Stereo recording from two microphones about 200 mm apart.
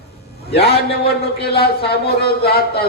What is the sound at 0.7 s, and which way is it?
Speech, 50° left (ahead or behind).